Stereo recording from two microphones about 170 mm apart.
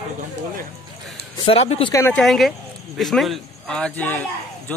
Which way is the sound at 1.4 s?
35° left (ahead or behind).